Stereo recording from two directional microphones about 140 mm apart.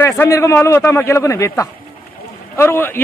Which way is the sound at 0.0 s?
20° left (ahead or behind).